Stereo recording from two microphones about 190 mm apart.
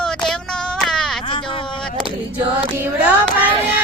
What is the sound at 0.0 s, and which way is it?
Child singing, centre (ahead or behind).